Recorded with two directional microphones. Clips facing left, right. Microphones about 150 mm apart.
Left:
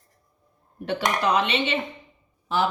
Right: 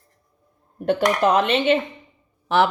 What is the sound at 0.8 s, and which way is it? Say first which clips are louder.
Speech: right 6 dB; 45° right (ahead or behind).